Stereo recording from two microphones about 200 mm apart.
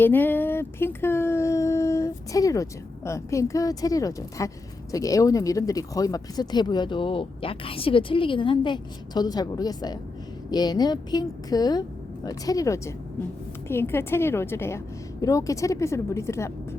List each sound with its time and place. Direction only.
0.0 s speech: 10° left (ahead or behind)